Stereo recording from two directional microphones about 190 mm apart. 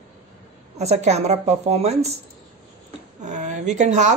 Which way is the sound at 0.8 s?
35° right (ahead or behind).